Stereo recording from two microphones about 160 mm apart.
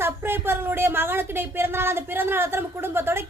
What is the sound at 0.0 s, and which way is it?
Speech, 15° right (ahead or behind).